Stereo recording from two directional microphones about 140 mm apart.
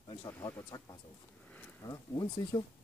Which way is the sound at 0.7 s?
25° left (ahead or behind).